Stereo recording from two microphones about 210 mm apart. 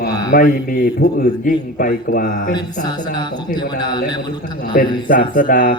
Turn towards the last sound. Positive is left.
turn(degrees=40)  # may be behind; listen again after turning